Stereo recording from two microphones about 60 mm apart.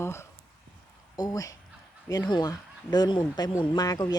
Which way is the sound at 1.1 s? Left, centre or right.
Left.